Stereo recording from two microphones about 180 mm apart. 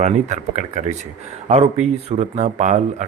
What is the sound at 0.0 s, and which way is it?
Speech, 40° right (ahead or behind).